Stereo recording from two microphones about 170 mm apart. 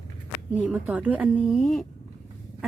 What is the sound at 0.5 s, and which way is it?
A woman's voice, 10° right (ahead or behind).